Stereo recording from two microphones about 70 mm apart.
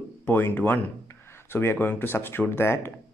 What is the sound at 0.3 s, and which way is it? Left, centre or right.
Speech, left.